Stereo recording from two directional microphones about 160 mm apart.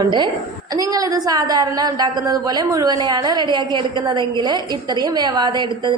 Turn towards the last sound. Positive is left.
turn(degrees=-30)  # may be behind; listen again after turning